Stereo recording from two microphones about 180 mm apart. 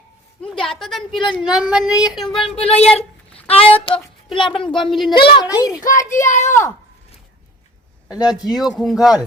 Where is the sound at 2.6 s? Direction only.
35° left (ahead or behind).